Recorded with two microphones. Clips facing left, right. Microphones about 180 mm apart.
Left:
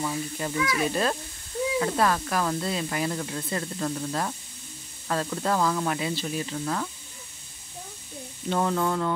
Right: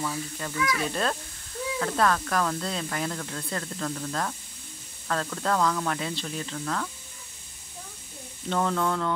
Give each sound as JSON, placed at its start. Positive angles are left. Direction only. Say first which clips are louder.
{"t": 0.0, "sound": "speech", "louder": "left 3 dB", "side_deg": 20}
{"t": 0.7, "sound": "speech", "louder": "left 3 dB", "side_deg": 10}
{"t": 8.5, "sound": "speech", "louder": "left 1 dB", "side_deg": 10}